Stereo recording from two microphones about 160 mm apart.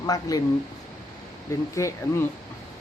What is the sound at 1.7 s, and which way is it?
Speech, 20° left (ahead or behind).